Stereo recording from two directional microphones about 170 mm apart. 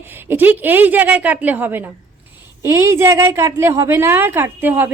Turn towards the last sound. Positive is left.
turn(degrees=-10)  # may be behind; listen again after turning